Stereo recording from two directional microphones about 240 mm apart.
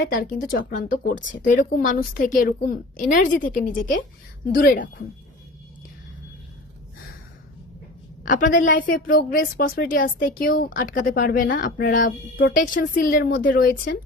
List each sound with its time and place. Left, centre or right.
0.0 s a woman's voice: left
8.3 s a woman's voice: left